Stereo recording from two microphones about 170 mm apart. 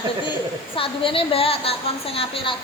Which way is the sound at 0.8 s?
30° left (ahead or behind).